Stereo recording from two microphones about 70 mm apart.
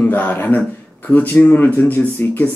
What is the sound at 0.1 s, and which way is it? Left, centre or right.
Speech, left.